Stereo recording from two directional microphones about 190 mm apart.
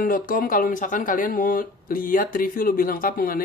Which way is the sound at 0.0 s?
45° left (ahead or behind).